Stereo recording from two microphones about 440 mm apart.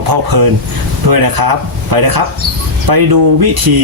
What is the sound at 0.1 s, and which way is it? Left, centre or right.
Speech, right.